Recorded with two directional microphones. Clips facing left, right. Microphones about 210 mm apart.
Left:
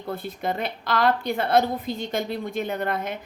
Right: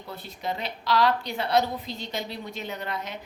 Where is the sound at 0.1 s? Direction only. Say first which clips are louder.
Left 5 dB; 50° left (ahead or behind).